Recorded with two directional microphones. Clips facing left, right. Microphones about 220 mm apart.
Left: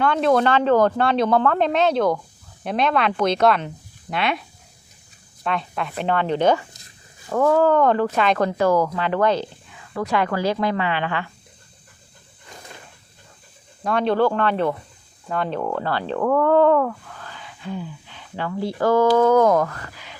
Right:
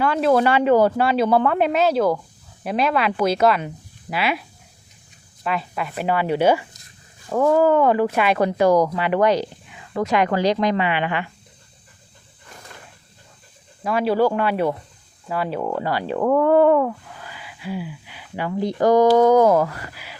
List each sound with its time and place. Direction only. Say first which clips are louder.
0.0 s speech: right 1 dB; 5° right (ahead or behind)
13.8 s speech: even; 5° right (ahead or behind)